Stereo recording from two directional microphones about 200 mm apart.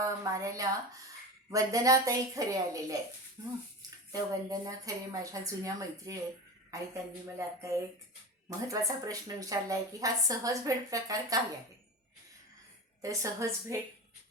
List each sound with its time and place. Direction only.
0.0 s a woman's voice: 15° right (ahead or behind)
13.0 s speech: 15° right (ahead or behind)